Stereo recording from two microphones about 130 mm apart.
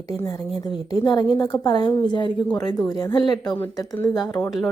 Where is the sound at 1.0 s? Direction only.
35° left (ahead or behind).